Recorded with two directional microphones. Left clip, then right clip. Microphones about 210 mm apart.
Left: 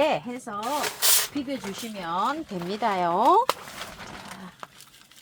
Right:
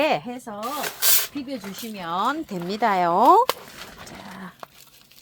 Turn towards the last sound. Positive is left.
turn(degrees=-45)  # may be behind; listen again after turning